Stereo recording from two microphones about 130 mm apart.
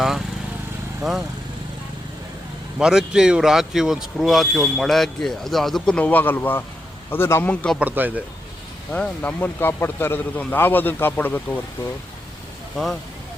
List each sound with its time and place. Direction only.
2.7 s a man's voice: 5° right (ahead or behind)
7.8 s speech: 15° right (ahead or behind)
8.9 s a man's voice: 10° left (ahead or behind)
12.7 s speech: centre (ahead or behind)